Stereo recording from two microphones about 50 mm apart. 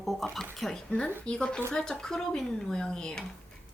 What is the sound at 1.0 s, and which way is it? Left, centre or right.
Speech, centre.